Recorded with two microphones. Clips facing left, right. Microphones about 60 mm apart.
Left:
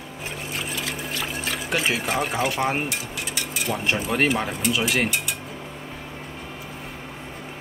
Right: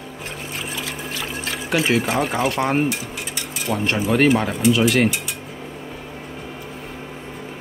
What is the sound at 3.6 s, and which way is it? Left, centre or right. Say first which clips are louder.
Speech: right 4 dB; centre.